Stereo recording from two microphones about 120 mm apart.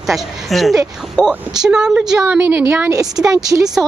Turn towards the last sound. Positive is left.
turn(degrees=-30)  # may be behind; listen again after turning